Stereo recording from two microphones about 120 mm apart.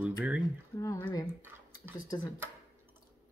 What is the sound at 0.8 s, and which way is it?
Speech, 25° left (ahead or behind).